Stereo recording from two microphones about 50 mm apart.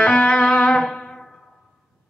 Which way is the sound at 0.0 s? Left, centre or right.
Left.